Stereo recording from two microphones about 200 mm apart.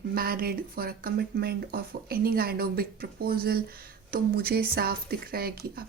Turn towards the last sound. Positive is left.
turn(degrees=-50)  # may be behind; listen again after turning